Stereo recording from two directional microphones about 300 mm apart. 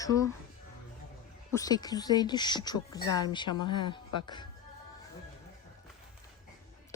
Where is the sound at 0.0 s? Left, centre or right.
Centre.